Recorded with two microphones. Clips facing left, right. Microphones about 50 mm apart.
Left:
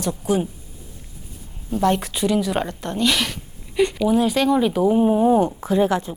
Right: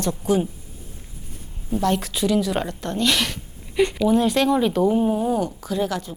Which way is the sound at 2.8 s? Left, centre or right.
Centre.